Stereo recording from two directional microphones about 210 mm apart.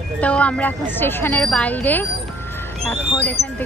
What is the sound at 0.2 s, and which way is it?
Speech, 5° left (ahead or behind).